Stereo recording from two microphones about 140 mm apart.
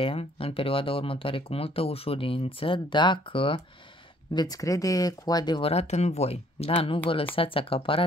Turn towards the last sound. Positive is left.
turn(degrees=40)  # may be behind; listen again after turning